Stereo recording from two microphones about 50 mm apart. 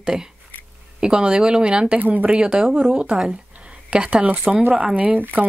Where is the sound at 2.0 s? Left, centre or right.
Right.